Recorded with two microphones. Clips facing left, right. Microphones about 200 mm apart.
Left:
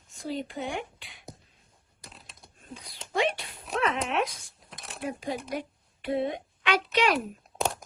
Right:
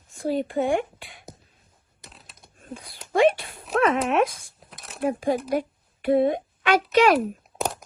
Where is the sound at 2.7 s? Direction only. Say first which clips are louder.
Right 6 dB; 55° right (ahead or behind).